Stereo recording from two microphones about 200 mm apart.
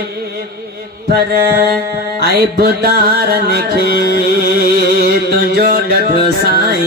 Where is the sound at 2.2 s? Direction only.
50° right (ahead or behind).